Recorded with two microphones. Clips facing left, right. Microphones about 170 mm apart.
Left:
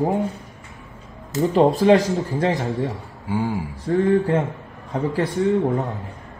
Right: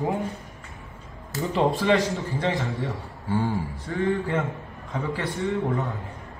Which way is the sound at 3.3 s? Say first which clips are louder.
Left 2 dB; 10° left (ahead or behind).